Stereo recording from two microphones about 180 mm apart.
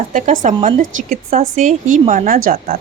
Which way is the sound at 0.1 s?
45° right (ahead or behind).